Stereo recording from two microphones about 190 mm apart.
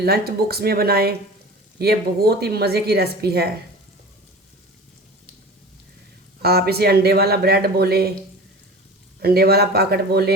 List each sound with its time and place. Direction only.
0.0 s speech: 55° right (ahead or behind)
6.4 s speech: 55° right (ahead or behind)
9.2 s speech: 55° right (ahead or behind)